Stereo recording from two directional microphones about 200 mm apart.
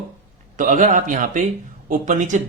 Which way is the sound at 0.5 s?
40° right (ahead or behind).